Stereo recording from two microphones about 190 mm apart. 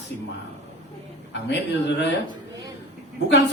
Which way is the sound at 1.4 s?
65° left (ahead or behind).